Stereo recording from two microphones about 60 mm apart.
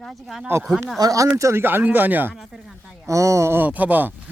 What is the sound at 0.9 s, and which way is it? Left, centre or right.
Speech, right.